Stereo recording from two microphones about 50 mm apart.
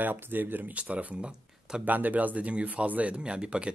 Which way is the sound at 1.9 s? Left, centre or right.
Right.